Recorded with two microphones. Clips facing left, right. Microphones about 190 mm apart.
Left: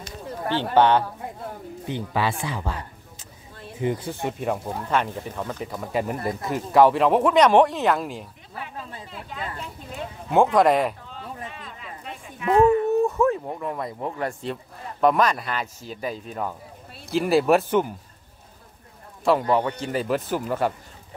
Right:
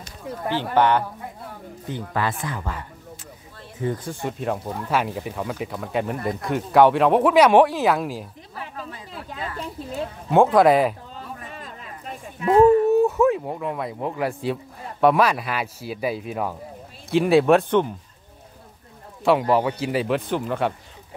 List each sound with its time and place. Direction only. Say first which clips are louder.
0.6 s speech: left 1 dB; 25° left (ahead or behind)
3.8 s speech: left 1 dB; 10° left (ahead or behind)
4.8 s speech: right 1 dB; 10° right (ahead or behind)
10.3 s speech: right 2 dB; centre (ahead or behind)
12.4 s speech: right 3 dB; 35° right (ahead or behind)
12.9 s speech: right 3 dB; centre (ahead or behind)
19.5 s speech: right 2 dB; 5° right (ahead or behind)